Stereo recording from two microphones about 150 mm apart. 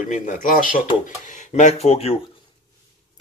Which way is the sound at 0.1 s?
60° left (ahead or behind).